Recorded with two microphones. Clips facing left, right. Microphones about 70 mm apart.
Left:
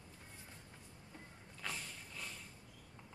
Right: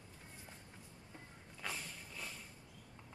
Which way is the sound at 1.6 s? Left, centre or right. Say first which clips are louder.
Right 1 dB; centre.